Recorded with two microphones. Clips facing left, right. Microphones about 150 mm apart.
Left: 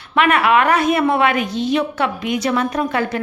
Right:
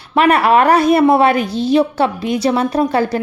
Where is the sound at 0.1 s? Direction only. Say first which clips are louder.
Right 3 dB; 35° right (ahead or behind).